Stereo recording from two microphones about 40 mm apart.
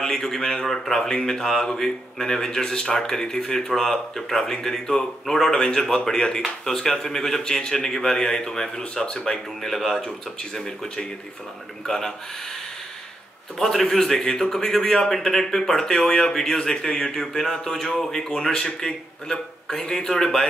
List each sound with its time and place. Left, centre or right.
0.0 s speech: centre
9.6 s speech: centre
10.0 s speech: centre
13.6 s a man's voice: centre
20.1 s speech: centre